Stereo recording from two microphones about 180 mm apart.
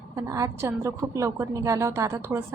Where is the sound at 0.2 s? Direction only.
15° right (ahead or behind).